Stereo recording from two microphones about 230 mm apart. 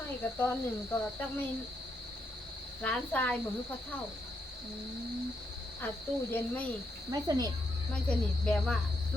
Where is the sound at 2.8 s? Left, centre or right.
Centre.